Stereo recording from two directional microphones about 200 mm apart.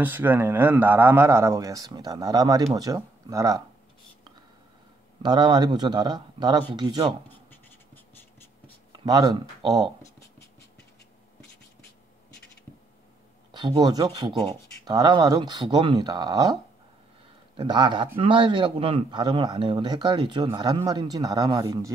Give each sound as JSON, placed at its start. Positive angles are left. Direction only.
{"t": 0.0, "sound": "a man's voice", "side_deg": -10}
{"t": 5.2, "sound": "a man's voice", "side_deg": -20}
{"t": 8.9, "sound": "speech", "side_deg": -20}
{"t": 13.5, "sound": "a man's voice", "side_deg": -20}
{"t": 17.6, "sound": "a man's voice", "side_deg": -20}